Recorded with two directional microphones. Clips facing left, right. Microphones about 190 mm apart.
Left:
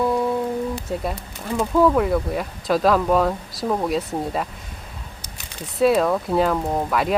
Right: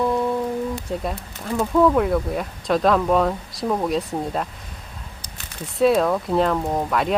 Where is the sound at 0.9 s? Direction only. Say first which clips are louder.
Even; centre (ahead or behind).